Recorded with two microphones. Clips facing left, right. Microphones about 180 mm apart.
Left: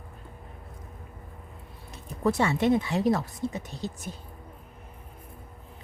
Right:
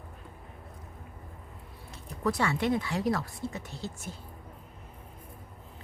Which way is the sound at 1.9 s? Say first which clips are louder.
Left 4 dB; 20° left (ahead or behind).